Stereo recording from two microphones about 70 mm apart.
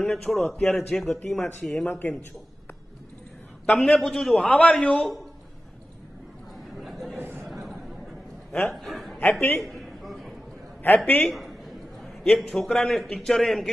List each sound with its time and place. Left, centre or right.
0.0 s a man's voice: centre
1.9 s speech: left
3.6 s a man's voice: centre
6.8 s a sound: centre
7.2 s a sound: right
7.4 s chatter: centre
8.6 s a man's voice: centre
9.2 s a man's voice: left
9.6 s a sound: centre
12.5 s a man's voice: centre